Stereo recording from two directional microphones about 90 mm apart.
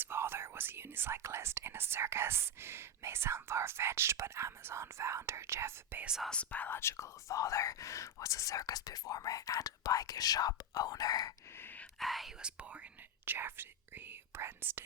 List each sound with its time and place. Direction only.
0.0 s speech: 25° right (ahead or behind)
6.0 s speech: 10° right (ahead or behind)
6.2 s speech: 15° left (ahead or behind); by 11.3 s 45° left (ahead or behind)
11.5 s gasp: 20° left (ahead or behind)
11.9 s speech: centre (ahead or behind); by 14.8 s 25° right (ahead or behind)